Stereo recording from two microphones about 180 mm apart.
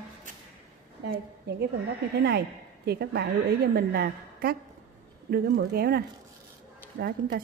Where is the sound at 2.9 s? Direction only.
65° right (ahead or behind).